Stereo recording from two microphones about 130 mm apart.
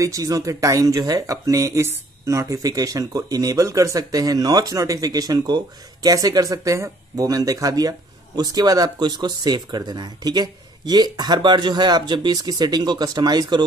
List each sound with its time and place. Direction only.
0.0 s speech: 25° right (ahead or behind)